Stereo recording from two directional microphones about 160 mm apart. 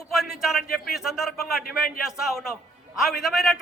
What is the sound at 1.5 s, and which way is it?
Speech, 70° left (ahead or behind).